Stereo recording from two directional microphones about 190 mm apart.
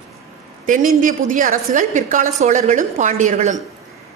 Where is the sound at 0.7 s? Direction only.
45° right (ahead or behind).